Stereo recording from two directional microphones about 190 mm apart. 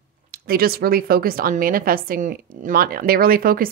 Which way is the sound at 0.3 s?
50° right (ahead or behind).